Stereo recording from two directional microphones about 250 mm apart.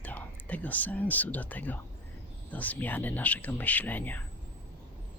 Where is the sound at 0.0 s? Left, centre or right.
Centre.